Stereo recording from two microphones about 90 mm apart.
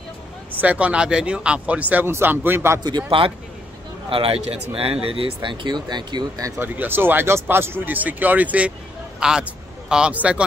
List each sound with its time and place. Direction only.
0.6 s speech: 15° right (ahead or behind)
3.1 s speech: 75° right (ahead or behind)
4.1 s speech: 90° right; by 6.4 s 55° right (ahead or behind)
6.6 s a man's voice: 20° right (ahead or behind)